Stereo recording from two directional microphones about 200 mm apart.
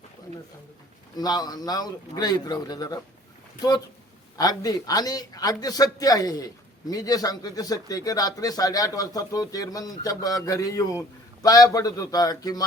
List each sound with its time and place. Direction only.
1.1 s a man's voice: 20° left (ahead or behind)
4.4 s a man's voice: 20° left (ahead or behind)